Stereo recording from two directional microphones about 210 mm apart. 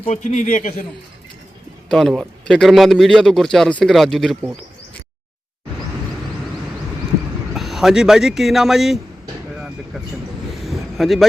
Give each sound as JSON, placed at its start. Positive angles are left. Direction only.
{"t": 0.0, "sound": "a man's voice", "side_deg": 35}
{"t": 1.9, "sound": "a man's voice", "side_deg": 0}
{"t": 7.5, "sound": "speech", "side_deg": 0}
{"t": 10.5, "sound": "a sound", "side_deg": 0}